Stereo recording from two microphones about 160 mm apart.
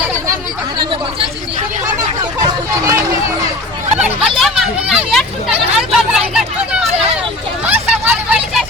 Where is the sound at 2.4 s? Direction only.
20° right (ahead or behind).